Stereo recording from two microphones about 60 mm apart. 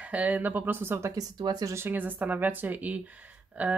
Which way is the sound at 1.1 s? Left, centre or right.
Right.